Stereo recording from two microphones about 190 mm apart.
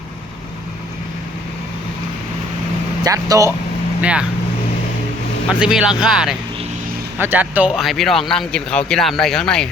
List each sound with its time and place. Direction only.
3.0 s speech: 20° right (ahead or behind)
4.0 s speech: 5° right (ahead or behind)
5.5 s speech: 5° right (ahead or behind)